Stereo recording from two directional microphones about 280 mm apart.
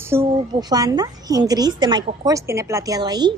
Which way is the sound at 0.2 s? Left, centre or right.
Centre.